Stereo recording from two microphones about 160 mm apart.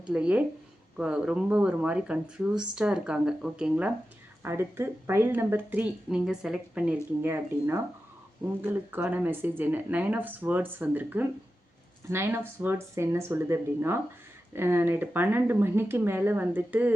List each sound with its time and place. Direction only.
0.1 s speech: 5° right (ahead or behind)